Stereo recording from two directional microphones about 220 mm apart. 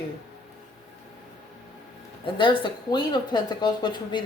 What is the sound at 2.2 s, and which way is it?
Speech, 20° left (ahead or behind).